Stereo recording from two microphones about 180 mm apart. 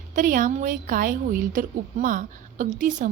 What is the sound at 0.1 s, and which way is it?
A woman's voice, 50° right (ahead or behind).